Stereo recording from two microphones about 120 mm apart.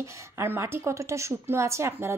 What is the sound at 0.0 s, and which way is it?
A woman's voice, 20° right (ahead or behind).